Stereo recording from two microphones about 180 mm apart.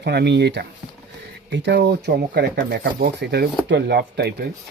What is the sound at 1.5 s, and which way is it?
Speech, 80° right.